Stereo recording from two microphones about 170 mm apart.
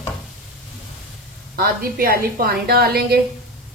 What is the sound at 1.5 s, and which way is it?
A woman's voice, 60° right (ahead or behind).